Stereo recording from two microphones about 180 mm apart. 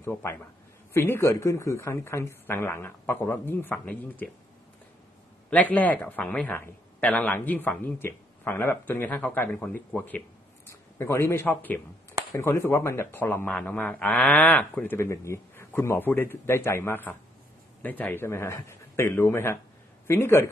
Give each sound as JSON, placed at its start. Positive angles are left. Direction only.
{"t": 0.0, "sound": "speech", "side_deg": 15}
{"t": 5.5, "sound": "speech", "side_deg": 10}